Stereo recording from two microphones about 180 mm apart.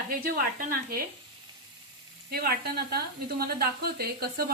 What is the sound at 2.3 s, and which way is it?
Speech, 55° right (ahead or behind).